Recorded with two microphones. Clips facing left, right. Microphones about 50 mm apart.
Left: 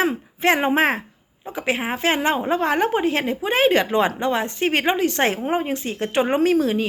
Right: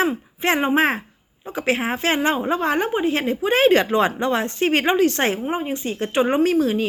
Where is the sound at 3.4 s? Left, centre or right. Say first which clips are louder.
Right 2 dB; left.